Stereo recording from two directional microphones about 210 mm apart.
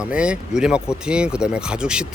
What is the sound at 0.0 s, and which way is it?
Speech, 5° right (ahead or behind).